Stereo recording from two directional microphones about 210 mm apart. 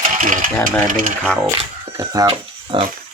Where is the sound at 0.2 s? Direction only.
40° right (ahead or behind).